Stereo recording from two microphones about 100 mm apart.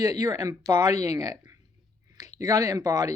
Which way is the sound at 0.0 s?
40° right (ahead or behind).